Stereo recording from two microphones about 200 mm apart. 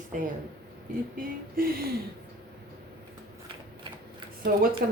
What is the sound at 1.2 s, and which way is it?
Speech, 45° right (ahead or behind).